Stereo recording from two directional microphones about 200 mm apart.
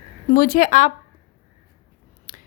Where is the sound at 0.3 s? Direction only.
45° left (ahead or behind).